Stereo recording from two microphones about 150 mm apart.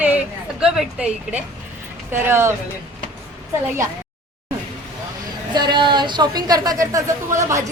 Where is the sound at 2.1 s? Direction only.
15° right (ahead or behind).